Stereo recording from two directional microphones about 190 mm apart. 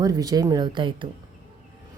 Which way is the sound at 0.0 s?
20° right (ahead or behind).